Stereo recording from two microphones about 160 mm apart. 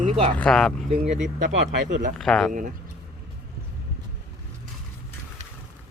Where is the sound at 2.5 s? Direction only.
55° right (ahead or behind).